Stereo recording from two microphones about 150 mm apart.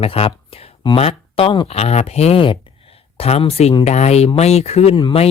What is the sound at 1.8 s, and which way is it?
Speech, 45° left (ahead or behind).